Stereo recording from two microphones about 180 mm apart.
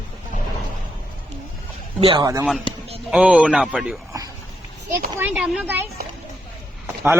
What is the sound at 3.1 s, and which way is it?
Speech, 5° right (ahead or behind).